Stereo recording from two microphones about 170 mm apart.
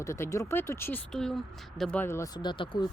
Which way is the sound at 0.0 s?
15° left (ahead or behind).